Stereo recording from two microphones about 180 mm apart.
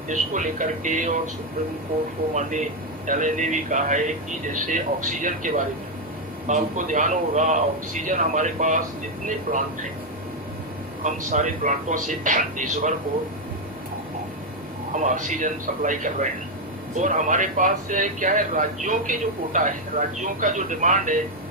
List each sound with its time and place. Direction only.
0.1 s speech: 45° right (ahead or behind)
2.3 s speech: 45° right (ahead or behind)
11.0 s speech: 45° right (ahead or behind)
14.9 s speech: 45° right (ahead or behind)